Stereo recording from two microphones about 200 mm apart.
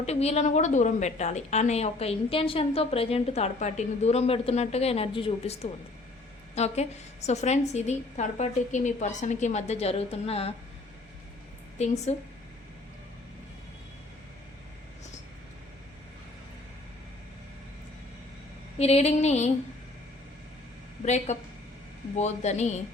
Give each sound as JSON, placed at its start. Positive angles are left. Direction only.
{"t": 0.0, "sound": "a woman's voice", "side_deg": 30}
{"t": 12.1, "sound": "a woman's voice", "side_deg": 35}
{"t": 18.8, "sound": "a woman's voice", "side_deg": 30}
{"t": 21.0, "sound": "a woman's voice", "side_deg": 35}